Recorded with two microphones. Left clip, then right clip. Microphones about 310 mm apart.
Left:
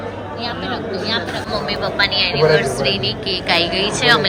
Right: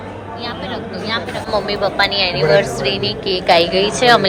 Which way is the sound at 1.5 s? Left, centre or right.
Centre.